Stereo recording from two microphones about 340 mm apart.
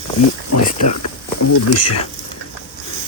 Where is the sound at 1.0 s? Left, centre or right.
Left.